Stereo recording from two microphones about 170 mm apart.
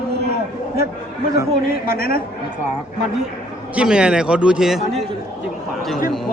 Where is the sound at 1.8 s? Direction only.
60° left (ahead or behind).